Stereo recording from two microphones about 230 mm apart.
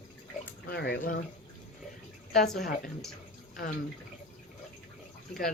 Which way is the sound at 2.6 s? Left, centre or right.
Left.